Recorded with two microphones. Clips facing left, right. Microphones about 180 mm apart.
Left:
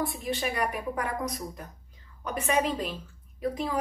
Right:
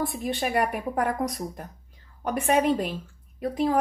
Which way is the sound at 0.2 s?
55° right (ahead or behind).